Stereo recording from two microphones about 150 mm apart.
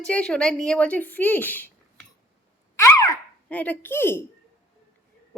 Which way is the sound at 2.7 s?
20° left (ahead or behind).